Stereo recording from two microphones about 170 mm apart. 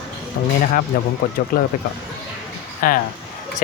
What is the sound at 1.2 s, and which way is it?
Speech, 60° left (ahead or behind).